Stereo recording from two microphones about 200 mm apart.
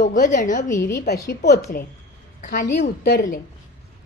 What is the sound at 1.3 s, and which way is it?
Speech, 50° left (ahead or behind).